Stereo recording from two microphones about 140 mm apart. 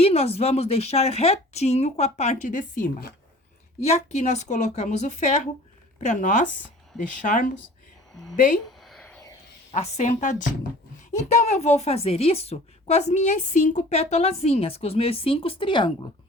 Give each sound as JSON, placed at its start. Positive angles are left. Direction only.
{"t": 0.0, "sound": "a woman's voice", "side_deg": 45}
{"t": 3.8, "sound": "a woman's voice", "side_deg": 50}
{"t": 8.1, "sound": "a woman's voice", "side_deg": 5}
{"t": 8.8, "sound": "whispering", "side_deg": 0}
{"t": 9.7, "sound": "a woman's voice", "side_deg": 55}
{"t": 11.1, "sound": "a woman's voice", "side_deg": 50}